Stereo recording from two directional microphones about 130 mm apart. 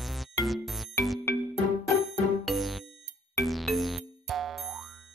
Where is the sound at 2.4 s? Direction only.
Centre (ahead or behind).